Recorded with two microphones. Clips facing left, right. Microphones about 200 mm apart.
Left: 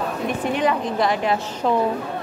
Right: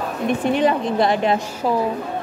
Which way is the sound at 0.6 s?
30° right (ahead or behind).